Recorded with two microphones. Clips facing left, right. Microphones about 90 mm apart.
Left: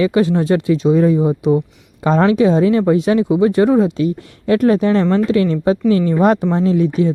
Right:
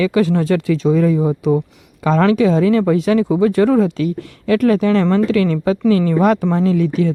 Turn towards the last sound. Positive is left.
turn(degrees=30)  # may be behind; listen again after turning